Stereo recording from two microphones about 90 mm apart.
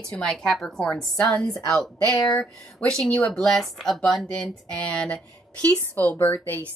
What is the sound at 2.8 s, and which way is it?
A woman's voice, 10° left (ahead or behind).